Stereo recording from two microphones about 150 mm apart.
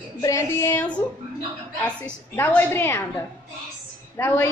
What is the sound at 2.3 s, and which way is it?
A woman's voice, 15° left (ahead or behind).